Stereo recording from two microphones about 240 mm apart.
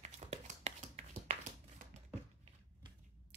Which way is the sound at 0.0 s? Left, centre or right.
Right.